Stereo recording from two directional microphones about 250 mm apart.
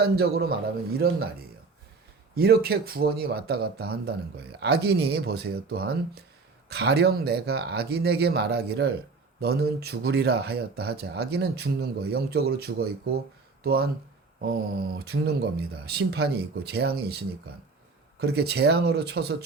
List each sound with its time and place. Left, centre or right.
0.0 s speech: right
2.3 s speech: right
14.9 s speech: right